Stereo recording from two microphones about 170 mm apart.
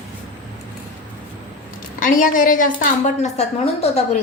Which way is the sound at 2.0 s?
50° left (ahead or behind).